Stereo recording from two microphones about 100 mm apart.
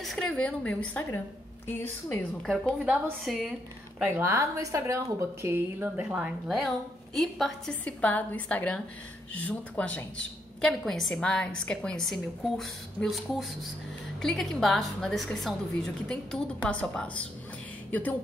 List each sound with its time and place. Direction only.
0.0 s a sound: centre (ahead or behind)
0.3 s a woman's voice: 10° left (ahead or behind)
2.8 s a woman's voice: 10° right (ahead or behind)
3.3 s a woman's voice: centre (ahead or behind)
4.0 s a woman's voice: 25° right (ahead or behind)
6.0 s a woman's voice: 10° right (ahead or behind)
7.2 s a woman's voice: centre (ahead or behind)
7.8 s a woman's voice: 15° left (ahead or behind)